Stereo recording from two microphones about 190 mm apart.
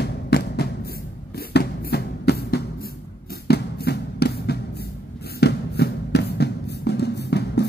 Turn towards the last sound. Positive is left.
turn(degrees=60)  # may be behind; listen again after turning